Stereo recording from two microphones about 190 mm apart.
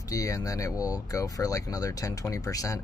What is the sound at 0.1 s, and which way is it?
Speech, 20° left (ahead or behind).